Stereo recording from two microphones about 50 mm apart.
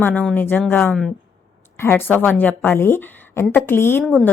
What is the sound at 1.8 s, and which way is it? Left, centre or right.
Speech, left.